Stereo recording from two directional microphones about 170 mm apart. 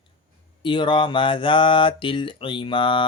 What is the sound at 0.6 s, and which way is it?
Mantra, 30° left (ahead or behind).